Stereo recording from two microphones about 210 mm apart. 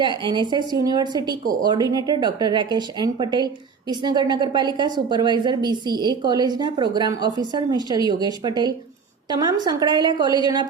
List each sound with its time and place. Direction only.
0.0 s a woman's voice: 20° right (ahead or behind)